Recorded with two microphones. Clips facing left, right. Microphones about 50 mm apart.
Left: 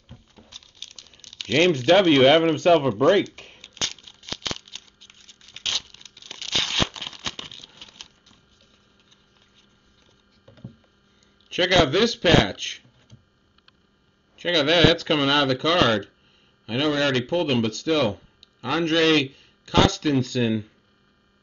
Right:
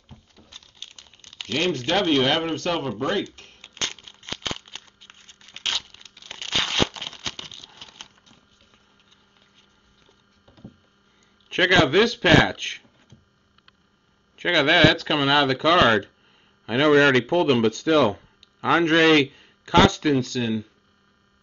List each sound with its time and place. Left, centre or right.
0.5 s crumpling: centre
1.6 s a man's voice: left
3.0 s speech: left
3.3 s crumpling: left
3.6 s crumpling: right
5.1 s tearing: right
5.7 s tearing: centre
6.7 s tearing: centre
11.4 s speech: right
14.3 s speech: right
14.8 s speech: centre
16.7 s speech: right
17.3 s speech: right
20.2 s speech: centre